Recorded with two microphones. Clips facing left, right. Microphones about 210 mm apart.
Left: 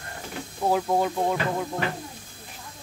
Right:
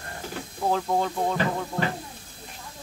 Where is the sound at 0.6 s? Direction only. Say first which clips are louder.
Left 2 dB; 10° left (ahead or behind).